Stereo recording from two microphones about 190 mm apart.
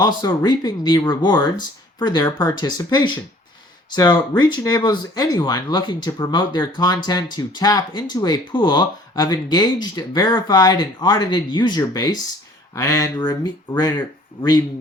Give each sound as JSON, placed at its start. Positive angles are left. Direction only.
{"t": 0.0, "sound": "speech", "side_deg": 20}